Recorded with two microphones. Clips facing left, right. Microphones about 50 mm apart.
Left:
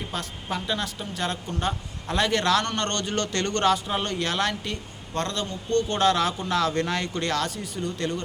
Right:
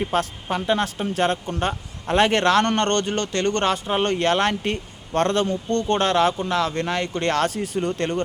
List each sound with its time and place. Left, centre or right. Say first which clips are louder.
0.0 s speech: right 10 dB; right
0.4 s a man's voice: right 6 dB; right
3.2 s speech: right 3 dB; right
4.0 s a man's voice: right 6 dB; right
4.7 s speech: right 6 dB; right
5.7 s speech: right 1 dB; right
7.4 s speech: right 7 dB; right